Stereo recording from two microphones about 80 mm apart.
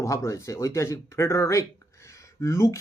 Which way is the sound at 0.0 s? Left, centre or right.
Left.